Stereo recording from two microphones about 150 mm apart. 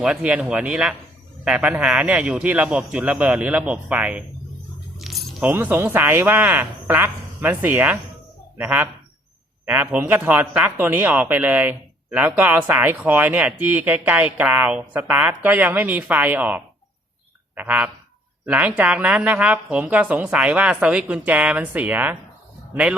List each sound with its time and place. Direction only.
0.0 s speech: 5° right (ahead or behind)
4.9 s keys jangling: centre (ahead or behind)
5.4 s speech: 15° right (ahead or behind)